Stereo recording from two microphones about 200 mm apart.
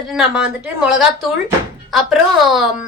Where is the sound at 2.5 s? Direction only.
Centre (ahead or behind).